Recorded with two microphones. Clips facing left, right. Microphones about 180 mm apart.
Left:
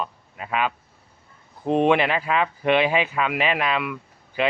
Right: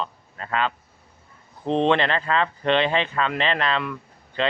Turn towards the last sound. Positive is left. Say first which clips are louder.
# left 1 dB
turn(degrees=10)  # may be behind; listen again after turning